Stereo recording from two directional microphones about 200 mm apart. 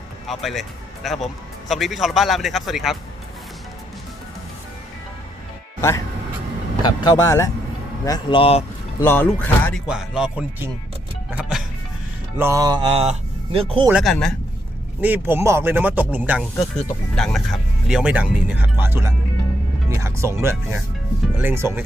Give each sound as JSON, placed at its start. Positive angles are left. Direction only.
{"t": 0.3, "sound": "speech", "side_deg": 0}
{"t": 6.8, "sound": "speech", "side_deg": 15}
{"t": 9.0, "sound": "speech", "side_deg": 10}
{"t": 9.8, "sound": "speech", "side_deg": -5}
{"t": 11.3, "sound": "music", "side_deg": -10}
{"t": 12.4, "sound": "speech", "side_deg": -15}
{"t": 13.8, "sound": "speech", "side_deg": 0}
{"t": 15.0, "sound": "speech", "side_deg": -10}